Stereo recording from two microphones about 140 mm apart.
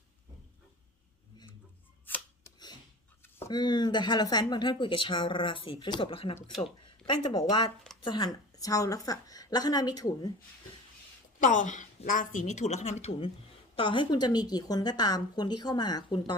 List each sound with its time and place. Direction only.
2.0 s chopping: 15° left (ahead or behind)
3.5 s speech: 30° left (ahead or behind)
7.0 s a woman's voice: 30° left (ahead or behind)
11.3 s a woman's voice: 60° left (ahead or behind); by 16.3 s 35° left (ahead or behind)